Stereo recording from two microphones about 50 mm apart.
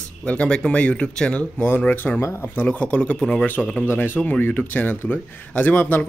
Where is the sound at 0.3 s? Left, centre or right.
Left.